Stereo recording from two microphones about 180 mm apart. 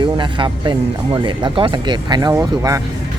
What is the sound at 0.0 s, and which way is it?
Speech, 25° right (ahead or behind).